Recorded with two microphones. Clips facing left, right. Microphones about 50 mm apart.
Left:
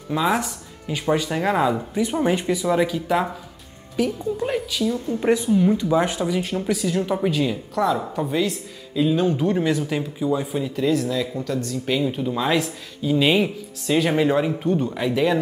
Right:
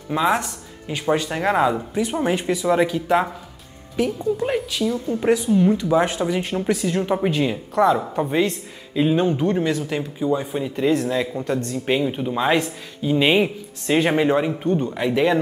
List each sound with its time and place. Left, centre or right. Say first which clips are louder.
0.1 s a woman's voice: right 1 dB; centre
6.0 s speech: right 1 dB; right
9.3 s a woman's voice: even; centre
10.9 s speech: right 3 dB; right
12.0 s speech: right 1 dB; centre
14.1 s a woman's voice: right 1 dB; centre
14.7 s speech: right 1 dB; centre
15.0 s a woman's voice: right 4 dB; centre